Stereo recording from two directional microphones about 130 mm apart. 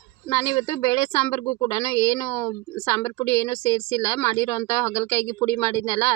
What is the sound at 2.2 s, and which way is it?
A woman's voice, 20° left (ahead or behind).